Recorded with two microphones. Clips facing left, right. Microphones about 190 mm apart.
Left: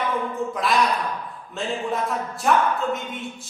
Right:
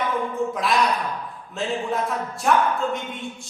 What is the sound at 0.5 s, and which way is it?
Speech, centre (ahead or behind).